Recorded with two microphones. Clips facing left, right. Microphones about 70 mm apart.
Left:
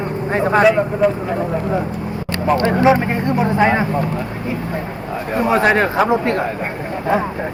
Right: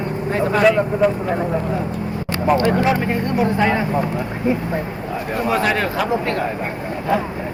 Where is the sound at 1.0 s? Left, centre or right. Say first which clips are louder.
Left 1 dB; centre.